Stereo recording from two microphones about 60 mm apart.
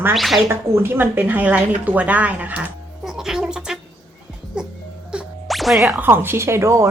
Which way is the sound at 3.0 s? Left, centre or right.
Centre.